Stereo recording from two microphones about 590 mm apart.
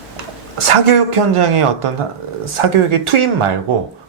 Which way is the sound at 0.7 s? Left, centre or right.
Right.